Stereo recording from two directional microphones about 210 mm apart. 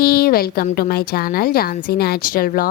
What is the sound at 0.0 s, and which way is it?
A woman's voice, 45° left (ahead or behind).